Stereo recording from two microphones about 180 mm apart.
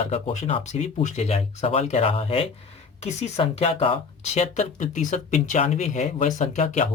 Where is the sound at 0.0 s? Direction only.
30° left (ahead or behind).